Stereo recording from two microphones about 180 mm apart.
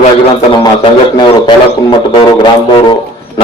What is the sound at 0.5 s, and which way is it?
Music, 25° left (ahead or behind).